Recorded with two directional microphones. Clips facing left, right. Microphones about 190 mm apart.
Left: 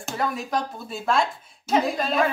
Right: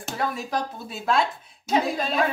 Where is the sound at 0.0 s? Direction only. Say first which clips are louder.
Left 1 dB; centre (ahead or behind).